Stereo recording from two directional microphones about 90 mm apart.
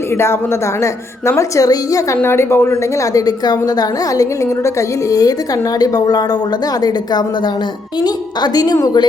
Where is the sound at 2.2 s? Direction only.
25° left (ahead or behind).